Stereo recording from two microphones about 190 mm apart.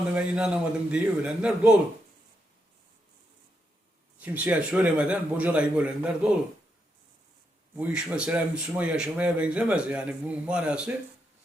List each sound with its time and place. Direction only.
0.1 s speech: 5° right (ahead or behind)
4.2 s a man's voice: 5° right (ahead or behind)
7.8 s speech: 5° right (ahead or behind)